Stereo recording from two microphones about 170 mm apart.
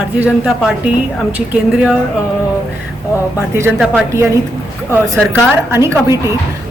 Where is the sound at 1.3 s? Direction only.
10° right (ahead or behind).